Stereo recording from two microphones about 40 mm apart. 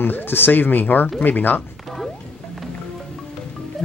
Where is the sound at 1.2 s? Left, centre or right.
Left.